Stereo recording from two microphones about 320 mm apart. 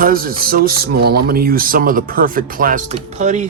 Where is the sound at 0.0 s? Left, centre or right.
Right.